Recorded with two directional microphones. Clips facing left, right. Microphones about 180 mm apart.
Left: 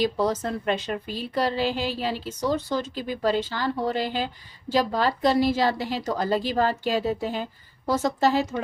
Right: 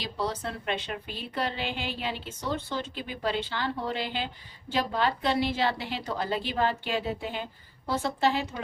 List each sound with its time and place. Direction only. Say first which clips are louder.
0.0 s a woman's voice: left 8 dB; 45° left (ahead or behind)